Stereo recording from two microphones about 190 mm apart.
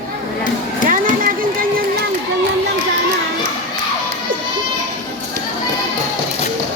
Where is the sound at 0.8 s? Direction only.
45° right (ahead or behind).